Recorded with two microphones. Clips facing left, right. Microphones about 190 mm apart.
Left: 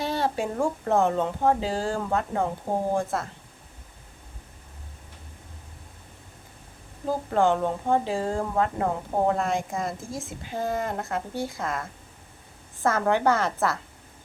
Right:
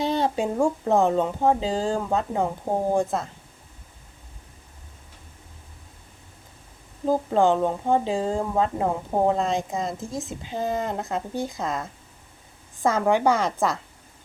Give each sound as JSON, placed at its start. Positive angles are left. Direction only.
{"t": 0.0, "sound": "speech", "side_deg": -20}
{"t": 7.1, "sound": "speech", "side_deg": -15}